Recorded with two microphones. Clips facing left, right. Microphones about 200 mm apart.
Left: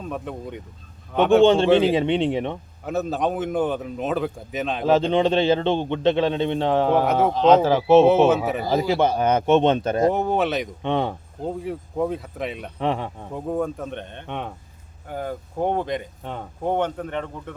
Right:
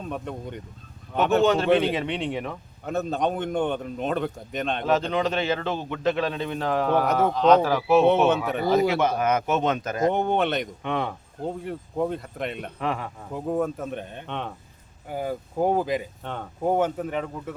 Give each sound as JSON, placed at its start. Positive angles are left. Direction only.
{"t": 0.0, "sound": "a man's voice", "side_deg": 0}
{"t": 1.5, "sound": "a man's voice", "side_deg": 25}
{"t": 2.8, "sound": "a man's voice", "side_deg": 0}
{"t": 4.9, "sound": "a man's voice", "side_deg": 30}
{"t": 10.2, "sound": "a man's voice", "side_deg": 0}
{"t": 10.8, "sound": "a man's voice", "side_deg": 30}
{"t": 11.4, "sound": "a man's voice", "side_deg": 0}
{"t": 12.8, "sound": "a man's voice", "side_deg": 30}
{"t": 13.3, "sound": "a man's voice", "side_deg": -5}
{"t": 14.3, "sound": "speech", "side_deg": 10}
{"t": 15.0, "sound": "a man's voice", "side_deg": -10}
{"t": 16.2, "sound": "speech", "side_deg": 10}
{"t": 16.6, "sound": "speech", "side_deg": -5}